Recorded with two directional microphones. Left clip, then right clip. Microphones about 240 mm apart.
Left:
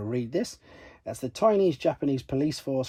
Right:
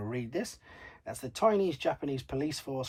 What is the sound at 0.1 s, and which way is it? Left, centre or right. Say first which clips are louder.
Speech: left 8 dB; left.